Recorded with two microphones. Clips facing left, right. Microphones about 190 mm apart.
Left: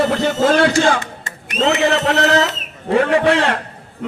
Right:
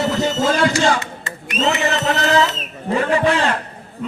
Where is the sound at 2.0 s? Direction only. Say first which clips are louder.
Left 2 dB; 65° left (ahead or behind).